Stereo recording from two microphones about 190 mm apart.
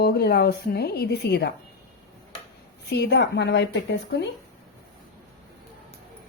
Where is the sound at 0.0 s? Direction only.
55° left (ahead or behind).